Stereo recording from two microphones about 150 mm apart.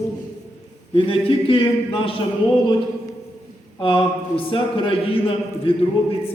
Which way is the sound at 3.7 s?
35° left (ahead or behind).